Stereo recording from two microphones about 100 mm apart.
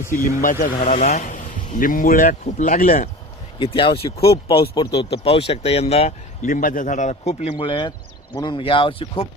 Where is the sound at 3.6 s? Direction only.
60° left (ahead or behind); by 6.1 s 90° left.